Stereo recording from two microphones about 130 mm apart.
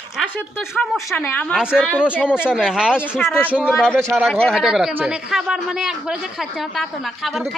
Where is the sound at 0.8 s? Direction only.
10° left (ahead or behind).